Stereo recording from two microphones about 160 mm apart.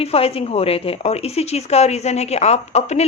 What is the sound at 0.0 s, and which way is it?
Speech, 40° left (ahead or behind).